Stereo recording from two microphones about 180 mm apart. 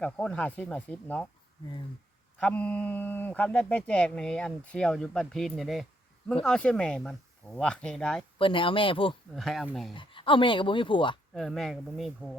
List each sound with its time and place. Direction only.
0.0 s speech: 5° left (ahead or behind)
2.4 s speech: 10° left (ahead or behind)
8.4 s speech: 30° left (ahead or behind)
9.3 s speech: centre (ahead or behind)
9.9 s speech: 30° left (ahead or behind)
11.3 s speech: centre (ahead or behind)